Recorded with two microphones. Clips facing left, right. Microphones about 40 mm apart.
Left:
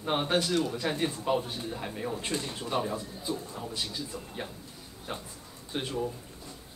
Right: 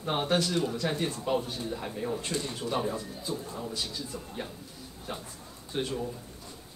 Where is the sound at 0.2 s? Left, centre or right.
Centre.